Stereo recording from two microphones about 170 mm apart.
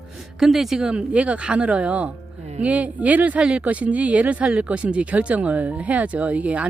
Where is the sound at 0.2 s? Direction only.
Centre (ahead or behind).